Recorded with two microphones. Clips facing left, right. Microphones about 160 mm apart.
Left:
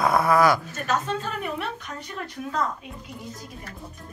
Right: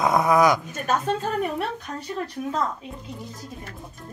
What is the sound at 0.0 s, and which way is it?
Speech, 20° right (ahead or behind).